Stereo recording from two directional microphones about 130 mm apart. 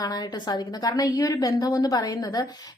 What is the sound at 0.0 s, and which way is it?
A woman's voice, 30° left (ahead or behind).